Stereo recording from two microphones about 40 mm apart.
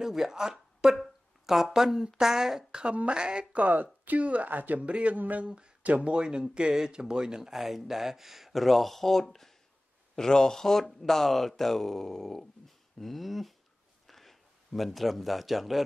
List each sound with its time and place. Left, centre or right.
0.0 s a woman's voice: centre
3.1 s speech: right
3.5 s speech: right
4.2 s speech: right
4.5 s speech: right
4.8 s speech: right
5.1 s speech: right
5.9 s speech: right; by 15.8 s centre